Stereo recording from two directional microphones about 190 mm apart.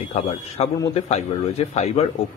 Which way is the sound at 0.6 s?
35° left (ahead or behind).